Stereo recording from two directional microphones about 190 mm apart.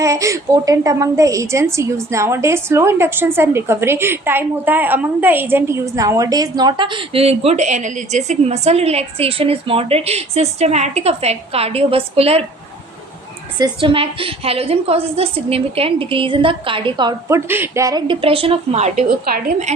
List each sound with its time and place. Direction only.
0.0 s a woman's voice: 15° right (ahead or behind); by 12.5 s 30° right (ahead or behind)
13.6 s a woman's voice: 25° right (ahead or behind); by 19.7 s 40° right (ahead or behind)